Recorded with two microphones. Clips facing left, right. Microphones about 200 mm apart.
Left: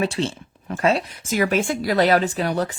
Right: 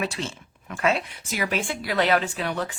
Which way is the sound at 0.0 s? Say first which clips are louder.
Left 6 dB; 30° left (ahead or behind).